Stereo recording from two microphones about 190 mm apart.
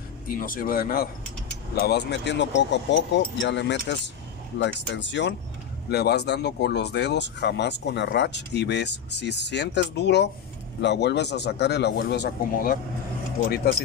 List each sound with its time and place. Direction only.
0.3 s speech: 50° left (ahead or behind)
1.8 s speech: 60° left (ahead or behind)
5.9 s speech: 60° left (ahead or behind)